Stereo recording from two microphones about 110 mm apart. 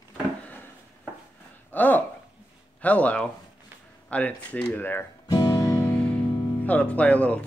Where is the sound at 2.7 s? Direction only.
15° left (ahead or behind).